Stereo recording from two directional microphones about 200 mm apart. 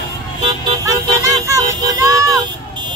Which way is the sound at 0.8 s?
15° right (ahead or behind).